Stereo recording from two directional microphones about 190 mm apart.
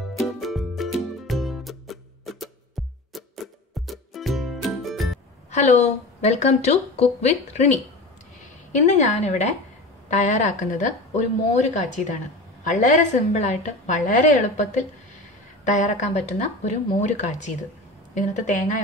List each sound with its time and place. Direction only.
0.2 s music: centre (ahead or behind)
5.5 s a woman's voice: 35° left (ahead or behind)
8.8 s a woman's voice: 40° left (ahead or behind)